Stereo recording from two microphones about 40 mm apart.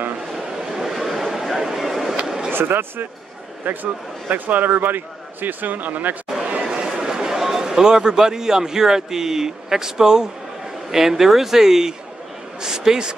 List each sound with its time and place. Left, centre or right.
0.3 s a sound: centre
2.5 s speech: right
3.6 s a man's voice: right
6.7 s a man's voice: centre